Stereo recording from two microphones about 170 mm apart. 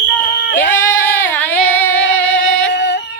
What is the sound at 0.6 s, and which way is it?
Female singing, 10° left (ahead or behind).